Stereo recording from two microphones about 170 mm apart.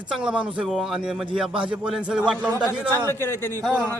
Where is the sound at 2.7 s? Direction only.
15° left (ahead or behind).